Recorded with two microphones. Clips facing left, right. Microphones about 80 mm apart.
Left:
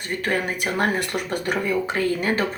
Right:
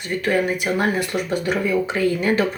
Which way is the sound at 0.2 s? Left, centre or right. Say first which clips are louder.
Right 5 dB; left.